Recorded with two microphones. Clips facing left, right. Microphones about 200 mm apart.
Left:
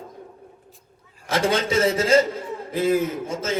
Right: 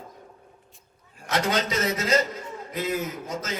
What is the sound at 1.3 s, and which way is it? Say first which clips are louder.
A man's voice: left 4 dB; 30° left (ahead or behind).